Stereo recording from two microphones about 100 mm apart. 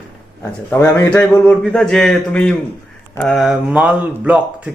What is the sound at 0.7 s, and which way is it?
Speech, 25° left (ahead or behind).